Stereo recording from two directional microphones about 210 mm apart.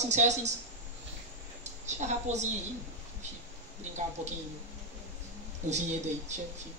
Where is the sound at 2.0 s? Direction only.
35° right (ahead or behind).